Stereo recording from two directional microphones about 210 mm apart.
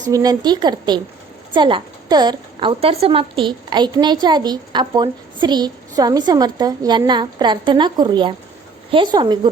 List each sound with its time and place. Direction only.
0.1 s a woman's voice: 15° right (ahead or behind)